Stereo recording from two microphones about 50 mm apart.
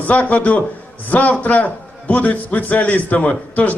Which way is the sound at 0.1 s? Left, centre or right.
Left.